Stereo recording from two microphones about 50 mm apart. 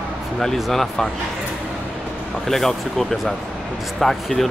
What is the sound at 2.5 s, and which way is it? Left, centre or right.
Speech, centre.